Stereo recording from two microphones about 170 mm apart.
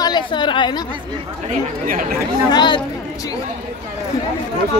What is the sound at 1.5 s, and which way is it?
Speech, 50° right (ahead or behind).